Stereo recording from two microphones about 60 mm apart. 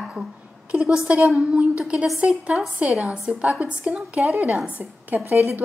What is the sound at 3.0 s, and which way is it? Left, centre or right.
Speech, centre.